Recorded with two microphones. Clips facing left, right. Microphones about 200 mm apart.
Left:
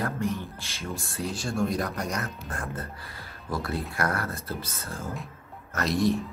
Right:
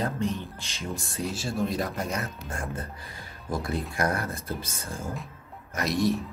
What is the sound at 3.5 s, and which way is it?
Speech, 20° right (ahead or behind).